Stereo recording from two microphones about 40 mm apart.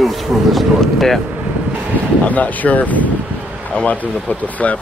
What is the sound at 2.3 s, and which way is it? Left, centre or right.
Speech, left.